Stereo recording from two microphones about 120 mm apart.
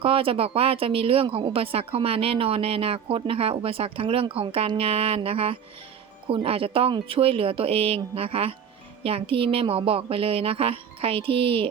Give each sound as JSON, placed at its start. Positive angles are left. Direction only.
{"t": 0.0, "sound": "speech", "side_deg": -50}